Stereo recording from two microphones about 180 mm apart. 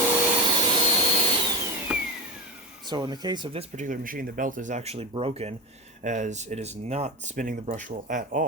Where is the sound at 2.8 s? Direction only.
25° right (ahead or behind).